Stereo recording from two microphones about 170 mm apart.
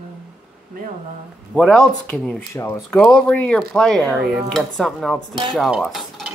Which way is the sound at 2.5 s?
15° left (ahead or behind).